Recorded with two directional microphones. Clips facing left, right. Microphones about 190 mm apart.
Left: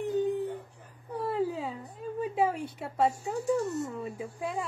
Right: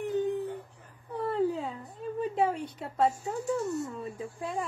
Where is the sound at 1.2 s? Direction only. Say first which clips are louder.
Right 2 dB; 5° left (ahead or behind).